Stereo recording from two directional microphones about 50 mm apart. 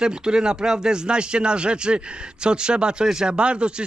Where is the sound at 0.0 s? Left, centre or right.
Centre.